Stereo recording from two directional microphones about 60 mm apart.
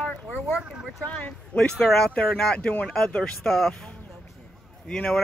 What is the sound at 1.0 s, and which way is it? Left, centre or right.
Speech, left.